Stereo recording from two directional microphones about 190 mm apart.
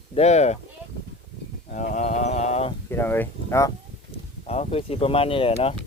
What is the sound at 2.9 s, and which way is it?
Speech, 10° left (ahead or behind).